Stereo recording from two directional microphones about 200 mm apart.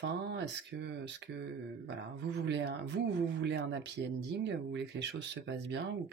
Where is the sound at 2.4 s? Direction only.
60° right (ahead or behind).